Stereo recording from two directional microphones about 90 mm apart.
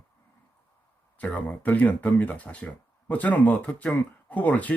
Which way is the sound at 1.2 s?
20° left (ahead or behind).